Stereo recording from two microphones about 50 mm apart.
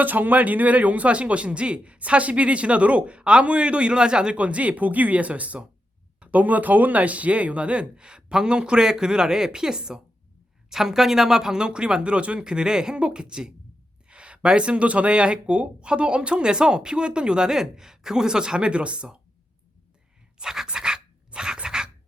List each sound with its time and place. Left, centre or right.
0.0 s speech: right
20.4 s pant: centre
20.7 s dog: centre